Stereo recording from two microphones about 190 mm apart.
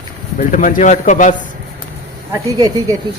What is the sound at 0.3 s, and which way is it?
Speech, 45° left (ahead or behind).